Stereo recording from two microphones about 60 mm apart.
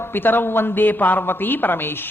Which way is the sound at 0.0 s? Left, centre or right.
Left.